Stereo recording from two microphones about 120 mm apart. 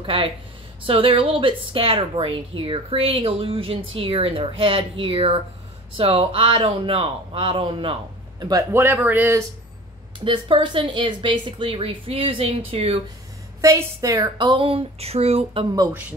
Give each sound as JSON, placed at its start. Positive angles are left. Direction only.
{"t": 0.0, "sound": "a woman's voice", "side_deg": -50}
{"t": 8.7, "sound": "speech", "side_deg": -15}
{"t": 10.2, "sound": "a woman's voice", "side_deg": -45}
{"t": 13.6, "sound": "a woman's voice", "side_deg": -25}
{"t": 15.9, "sound": "speech", "side_deg": -15}